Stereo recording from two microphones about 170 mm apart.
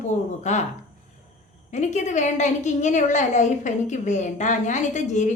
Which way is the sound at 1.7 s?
45° left (ahead or behind).